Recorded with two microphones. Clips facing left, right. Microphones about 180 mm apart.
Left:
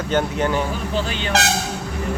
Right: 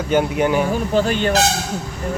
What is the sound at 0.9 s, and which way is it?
Speech, 50° right (ahead or behind).